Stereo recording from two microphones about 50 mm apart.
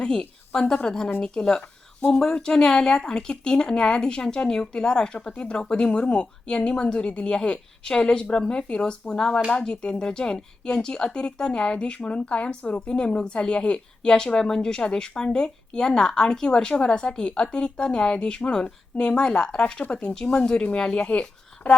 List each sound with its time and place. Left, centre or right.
0.5 s speech: centre